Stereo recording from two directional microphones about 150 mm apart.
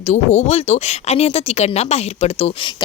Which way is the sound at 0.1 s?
45° left (ahead or behind).